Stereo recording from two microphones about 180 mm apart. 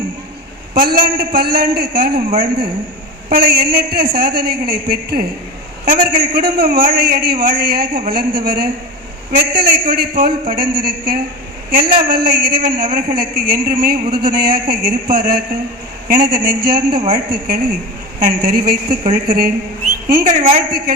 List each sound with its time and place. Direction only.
0.7 s a man's voice: 55° right (ahead or behind)
3.3 s a man's voice: 60° right (ahead or behind)